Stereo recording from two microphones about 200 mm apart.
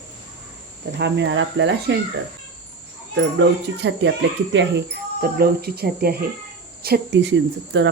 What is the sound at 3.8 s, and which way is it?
Speech, 60° right (ahead or behind).